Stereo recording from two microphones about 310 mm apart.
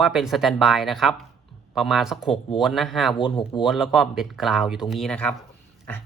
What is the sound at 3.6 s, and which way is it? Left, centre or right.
Speech, centre.